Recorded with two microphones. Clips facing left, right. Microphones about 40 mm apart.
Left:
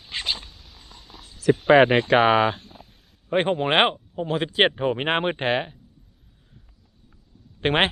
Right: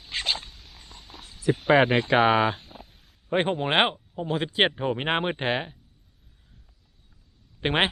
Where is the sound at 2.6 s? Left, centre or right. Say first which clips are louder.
Even; centre.